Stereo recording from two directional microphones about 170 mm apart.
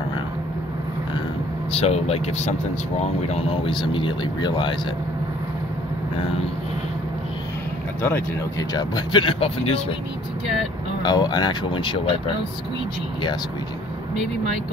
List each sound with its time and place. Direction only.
1.7 s speech: 35° left (ahead or behind)
8.0 s speech: 15° left (ahead or behind)
8.7 s speech: 25° left (ahead or behind)
11.0 s speech: 25° left (ahead or behind)